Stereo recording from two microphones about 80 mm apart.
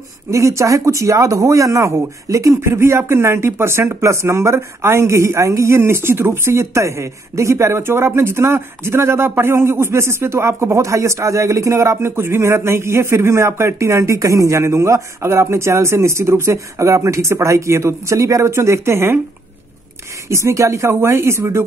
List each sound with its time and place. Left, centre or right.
0.3 s speech: right
20.2 s speech: right